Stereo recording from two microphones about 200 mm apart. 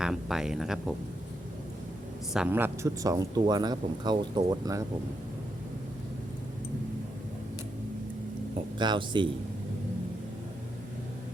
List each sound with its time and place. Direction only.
0.0 s speech: centre (ahead or behind)
2.3 s a man's voice: 5° right (ahead or behind)
8.8 s a man's voice: 25° right (ahead or behind)